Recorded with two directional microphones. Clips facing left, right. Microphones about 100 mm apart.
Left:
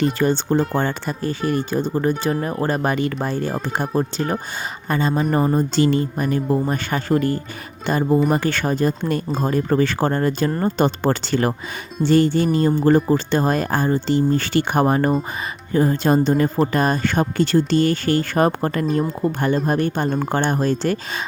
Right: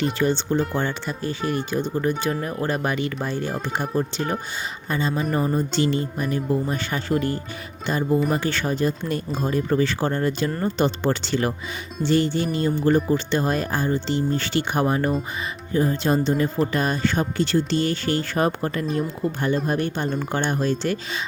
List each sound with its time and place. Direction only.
0.0 s speech: 45° left (ahead or behind)